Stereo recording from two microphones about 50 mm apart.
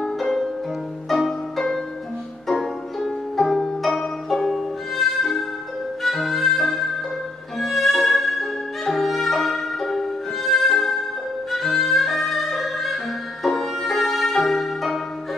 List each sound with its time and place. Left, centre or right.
0.0 s music: centre